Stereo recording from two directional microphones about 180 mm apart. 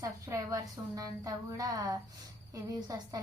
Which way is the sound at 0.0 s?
20° right (ahead or behind).